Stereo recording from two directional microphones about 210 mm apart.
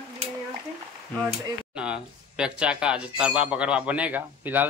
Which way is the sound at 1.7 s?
5° right (ahead or behind).